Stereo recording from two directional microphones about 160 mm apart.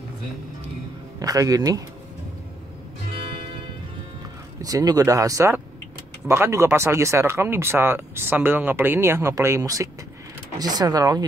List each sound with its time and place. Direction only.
1.2 s speech: 20° right (ahead or behind)
3.2 s music: 35° right (ahead or behind)
4.6 s speech: 20° right (ahead or behind)